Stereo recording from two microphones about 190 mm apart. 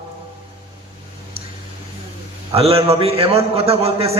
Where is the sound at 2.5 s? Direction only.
30° right (ahead or behind).